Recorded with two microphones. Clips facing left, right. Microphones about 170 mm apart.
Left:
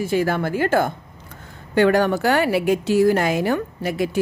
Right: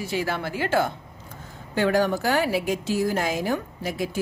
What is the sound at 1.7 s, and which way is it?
A woman's voice, 65° left (ahead or behind).